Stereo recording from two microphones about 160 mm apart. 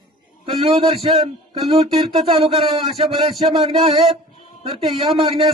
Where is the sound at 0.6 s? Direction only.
35° right (ahead or behind).